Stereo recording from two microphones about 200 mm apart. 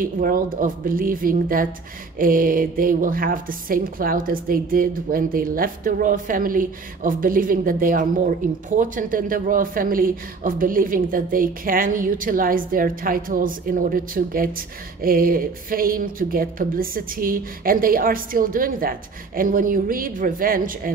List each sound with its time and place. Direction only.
0.0 s a woman's voice: 45° right (ahead or behind)